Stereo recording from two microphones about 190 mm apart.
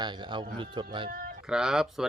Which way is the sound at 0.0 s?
25° right (ahead or behind).